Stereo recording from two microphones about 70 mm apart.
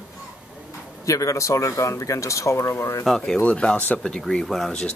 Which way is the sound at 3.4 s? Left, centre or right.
Centre.